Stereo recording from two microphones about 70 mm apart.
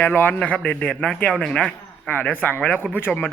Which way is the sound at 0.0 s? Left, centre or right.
Left.